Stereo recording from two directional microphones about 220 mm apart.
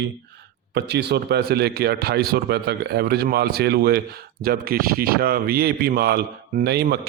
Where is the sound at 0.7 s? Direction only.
50° right (ahead or behind).